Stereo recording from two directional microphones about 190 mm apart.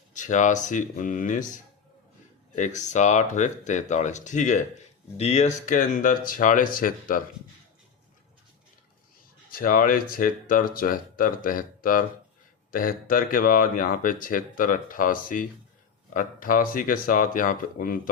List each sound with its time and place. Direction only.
0.1 s speech: 40° left (ahead or behind)
2.6 s speech: 40° left (ahead or behind)
9.5 s speech: 50° left (ahead or behind)